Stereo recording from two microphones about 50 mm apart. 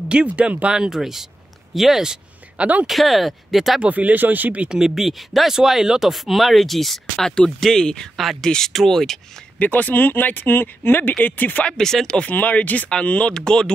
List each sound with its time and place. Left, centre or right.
0.1 s speech: right
0.7 s speech: centre
2.5 s speech: right
2.9 s speech: centre
3.8 s speech: right
4.6 s speech: centre
8.2 s speech: centre
8.5 s speech: centre
9.6 s speech: left
11.1 s speech: left
11.6 s speech: centre
12.2 s speech: left
13.3 s speech: centre